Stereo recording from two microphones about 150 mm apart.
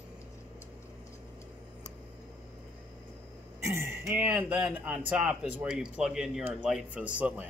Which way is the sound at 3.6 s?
20° right (ahead or behind).